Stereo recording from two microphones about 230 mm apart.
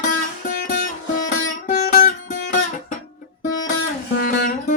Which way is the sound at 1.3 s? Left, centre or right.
Left.